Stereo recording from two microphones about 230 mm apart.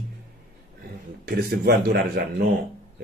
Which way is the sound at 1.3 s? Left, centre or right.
Right.